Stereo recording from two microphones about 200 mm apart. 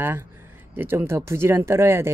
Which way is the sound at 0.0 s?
10° right (ahead or behind).